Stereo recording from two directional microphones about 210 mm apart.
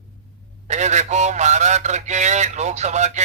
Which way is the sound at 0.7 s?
35° right (ahead or behind).